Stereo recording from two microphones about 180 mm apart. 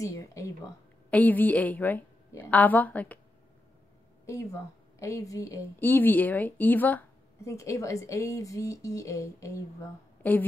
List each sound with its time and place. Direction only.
0.0 s a woman's voice: 15° left (ahead or behind)
4.3 s a woman's voice: 15° left (ahead or behind)